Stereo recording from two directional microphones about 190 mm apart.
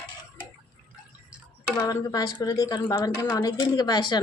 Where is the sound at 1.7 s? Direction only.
15° left (ahead or behind).